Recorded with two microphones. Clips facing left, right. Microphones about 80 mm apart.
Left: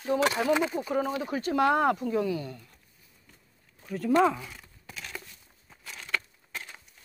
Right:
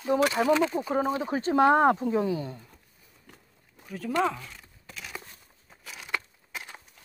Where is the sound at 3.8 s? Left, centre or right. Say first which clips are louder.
Left 4 dB; centre.